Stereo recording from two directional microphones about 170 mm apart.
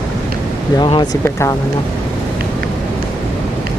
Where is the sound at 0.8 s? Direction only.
25° left (ahead or behind).